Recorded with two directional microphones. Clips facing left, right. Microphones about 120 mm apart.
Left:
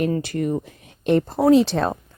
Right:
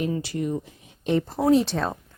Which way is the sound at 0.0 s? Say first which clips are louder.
Left 4 dB; 55° left (ahead or behind).